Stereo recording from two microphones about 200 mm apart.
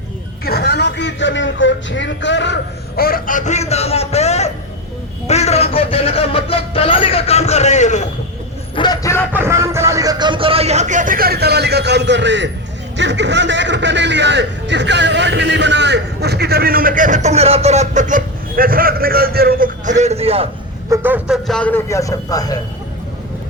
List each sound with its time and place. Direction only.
0.4 s a man's voice: 55° left (ahead or behind); by 8.0 s 35° left (ahead or behind)
8.7 s speech: 20° left (ahead or behind)
9.3 s speech: 15° right (ahead or behind); by 20.5 s 30° right (ahead or behind)
20.9 s a man's voice: 10° right (ahead or behind)
21.4 s a man's voice: 5° left (ahead or behind)